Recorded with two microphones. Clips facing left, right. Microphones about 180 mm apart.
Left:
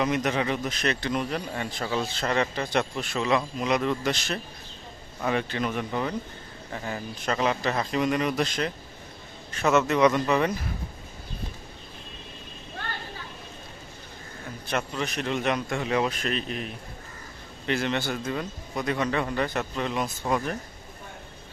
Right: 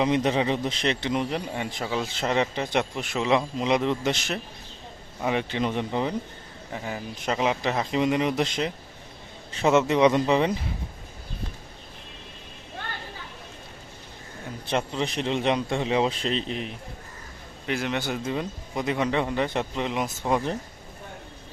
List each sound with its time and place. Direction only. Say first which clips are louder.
0.0 s speech: right 3 dB; 25° right (ahead or behind)
6.7 s speech: even; 10° right (ahead or behind); by 10.6 s 25° right (ahead or behind)
14.7 s speech: right 3 dB; 30° right (ahead or behind)
17.7 s speech: left 1 dB; 10° right (ahead or behind); by 20.6 s 25° right (ahead or behind)